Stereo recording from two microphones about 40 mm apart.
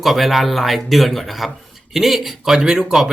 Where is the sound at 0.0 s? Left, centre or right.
Centre.